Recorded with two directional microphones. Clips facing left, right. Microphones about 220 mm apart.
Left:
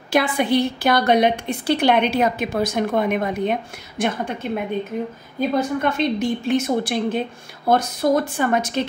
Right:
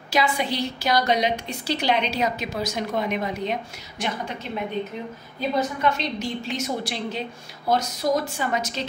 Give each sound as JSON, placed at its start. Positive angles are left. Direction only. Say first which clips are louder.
{"t": 0.1, "sound": "a woman's voice", "louder": "left 6 dB", "side_deg": 55}
{"t": 5.6, "sound": "a woman's voice", "louder": "left 1 dB", "side_deg": 55}